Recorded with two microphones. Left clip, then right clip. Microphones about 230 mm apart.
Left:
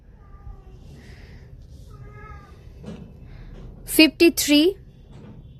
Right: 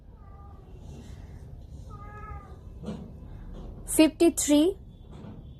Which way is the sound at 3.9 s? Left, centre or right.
Left.